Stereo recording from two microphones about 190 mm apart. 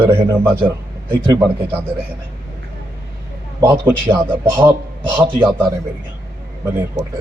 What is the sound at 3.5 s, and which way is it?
Speech, 15° right (ahead or behind).